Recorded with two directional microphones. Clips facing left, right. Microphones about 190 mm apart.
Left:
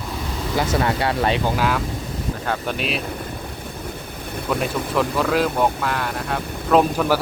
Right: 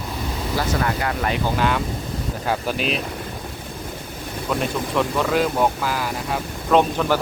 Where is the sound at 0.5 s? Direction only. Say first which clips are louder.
Left 3 dB; 25° left (ahead or behind).